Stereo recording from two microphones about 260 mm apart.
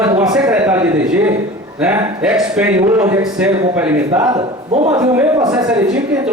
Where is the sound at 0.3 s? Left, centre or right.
Centre.